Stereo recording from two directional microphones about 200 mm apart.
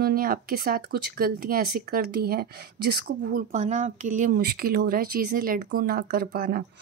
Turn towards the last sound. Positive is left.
turn(degrees=-45)  # may be behind; listen again after turning